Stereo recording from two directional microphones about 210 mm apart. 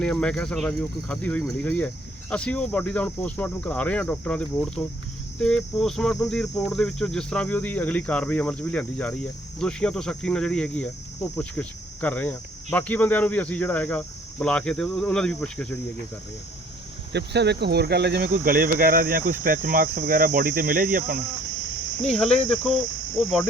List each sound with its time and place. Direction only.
0.0 s speech: 5° left (ahead or behind)
17.1 s speech: 55° right (ahead or behind)
22.1 s speech: 5° left (ahead or behind)